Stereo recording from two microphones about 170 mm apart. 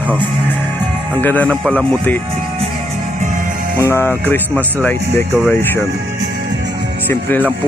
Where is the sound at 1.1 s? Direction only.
10° left (ahead or behind).